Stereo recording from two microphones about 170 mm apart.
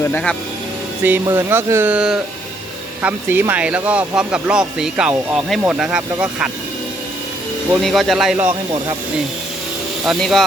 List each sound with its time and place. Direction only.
0.0 s speech: 10° left (ahead or behind)
1.0 s speech: 10° right (ahead or behind)
7.8 s speech: centre (ahead or behind)
10.1 s speech: centre (ahead or behind)